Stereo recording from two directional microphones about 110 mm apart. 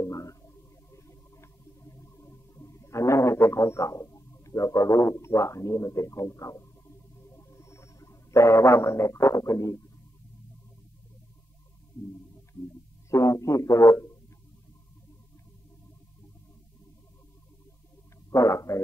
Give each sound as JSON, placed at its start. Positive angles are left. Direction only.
{"t": 0.0, "sound": "music", "side_deg": 25}
{"t": 7.2, "sound": "a sound", "side_deg": 25}
{"t": 13.1, "sound": "a man's voice", "side_deg": 30}
{"t": 18.3, "sound": "a man's voice", "side_deg": 30}